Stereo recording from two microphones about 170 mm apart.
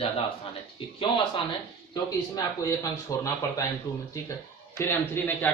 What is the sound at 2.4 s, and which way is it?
Speech, 20° left (ahead or behind).